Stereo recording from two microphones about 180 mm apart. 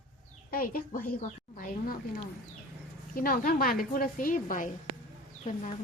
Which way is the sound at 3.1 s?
50° left (ahead or behind).